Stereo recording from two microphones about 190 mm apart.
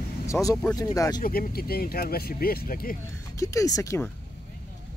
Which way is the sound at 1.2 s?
50° left (ahead or behind).